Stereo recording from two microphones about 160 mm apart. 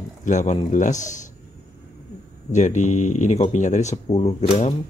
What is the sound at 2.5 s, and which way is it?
Speech, 50° left (ahead or behind).